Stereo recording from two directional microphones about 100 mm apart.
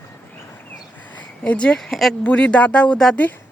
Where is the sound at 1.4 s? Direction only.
10° left (ahead or behind).